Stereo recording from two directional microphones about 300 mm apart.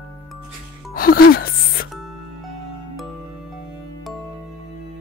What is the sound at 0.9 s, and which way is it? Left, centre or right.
Music, left.